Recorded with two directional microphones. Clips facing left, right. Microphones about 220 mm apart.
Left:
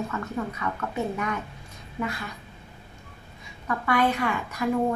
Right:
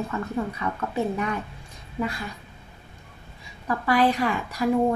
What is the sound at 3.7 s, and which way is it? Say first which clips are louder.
A woman's voice: right 3 dB; 35° right (ahead or behind).